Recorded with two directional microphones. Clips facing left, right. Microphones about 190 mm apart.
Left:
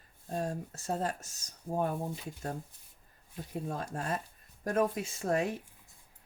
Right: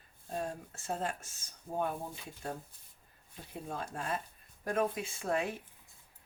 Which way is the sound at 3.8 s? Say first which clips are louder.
Left 2 dB; 40° left (ahead or behind).